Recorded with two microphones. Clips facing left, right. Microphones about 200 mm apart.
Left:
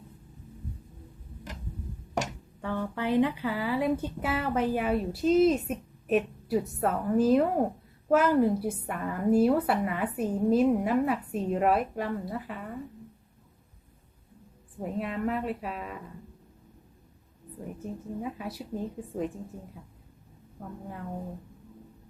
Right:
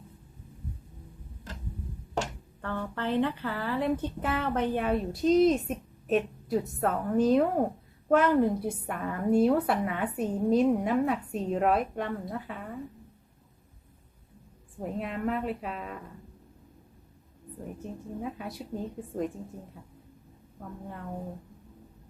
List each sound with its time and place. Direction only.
2.6 s speech: 10° left (ahead or behind)
14.8 s speech: centre (ahead or behind)
18.2 s speech: centre (ahead or behind)
20.6 s speech: 5° left (ahead or behind)